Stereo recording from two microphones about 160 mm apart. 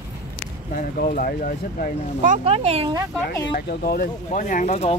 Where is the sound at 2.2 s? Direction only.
45° right (ahead or behind).